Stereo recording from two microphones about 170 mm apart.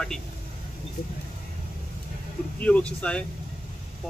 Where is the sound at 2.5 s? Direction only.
10° left (ahead or behind).